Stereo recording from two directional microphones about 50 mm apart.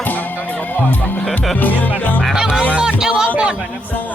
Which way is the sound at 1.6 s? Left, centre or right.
Left.